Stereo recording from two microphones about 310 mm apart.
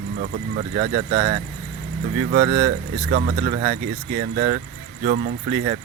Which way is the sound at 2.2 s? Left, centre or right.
Right.